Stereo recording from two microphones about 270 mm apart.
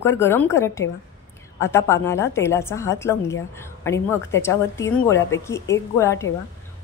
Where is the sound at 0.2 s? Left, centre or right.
Centre.